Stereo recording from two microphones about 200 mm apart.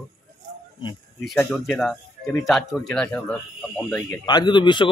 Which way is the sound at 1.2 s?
5° left (ahead or behind).